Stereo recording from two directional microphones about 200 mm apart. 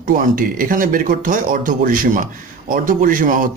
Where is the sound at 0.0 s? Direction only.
45° right (ahead or behind).